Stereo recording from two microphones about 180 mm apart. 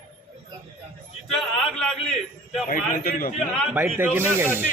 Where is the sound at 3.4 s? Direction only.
5° right (ahead or behind).